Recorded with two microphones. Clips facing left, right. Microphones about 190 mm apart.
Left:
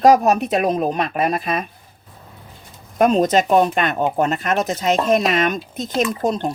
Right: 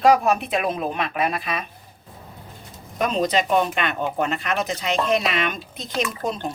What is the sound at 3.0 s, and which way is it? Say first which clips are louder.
Speech: left 6 dB; 50° left (ahead or behind).